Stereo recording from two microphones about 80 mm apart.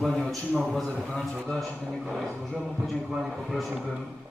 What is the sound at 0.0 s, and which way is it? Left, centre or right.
A man's voice, centre.